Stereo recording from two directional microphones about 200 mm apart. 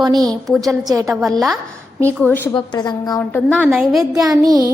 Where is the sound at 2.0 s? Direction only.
10° left (ahead or behind).